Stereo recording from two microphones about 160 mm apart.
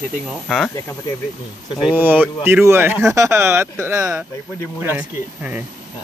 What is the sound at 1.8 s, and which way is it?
Speech, 10° right (ahead or behind).